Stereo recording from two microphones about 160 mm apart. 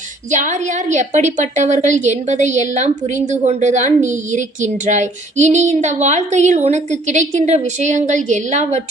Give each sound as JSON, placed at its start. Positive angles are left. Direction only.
{"t": 0.3, "sound": "child singing", "side_deg": -50}